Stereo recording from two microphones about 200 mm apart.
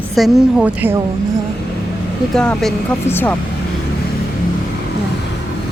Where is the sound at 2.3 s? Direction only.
5° left (ahead or behind).